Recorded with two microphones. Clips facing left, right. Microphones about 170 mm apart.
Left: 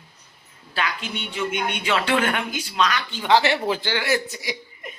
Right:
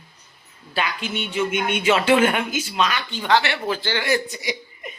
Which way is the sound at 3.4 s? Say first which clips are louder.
Left 3 dB; 35° left (ahead or behind).